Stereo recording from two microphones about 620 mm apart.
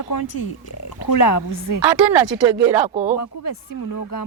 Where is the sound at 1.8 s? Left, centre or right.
Right.